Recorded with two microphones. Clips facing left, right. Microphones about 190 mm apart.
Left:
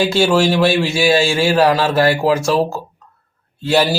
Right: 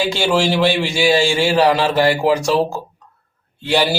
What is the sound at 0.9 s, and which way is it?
Speech, 15° right (ahead or behind).